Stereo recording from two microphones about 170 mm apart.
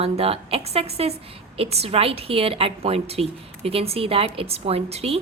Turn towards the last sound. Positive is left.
turn(degrees=-35)  # may be behind; listen again after turning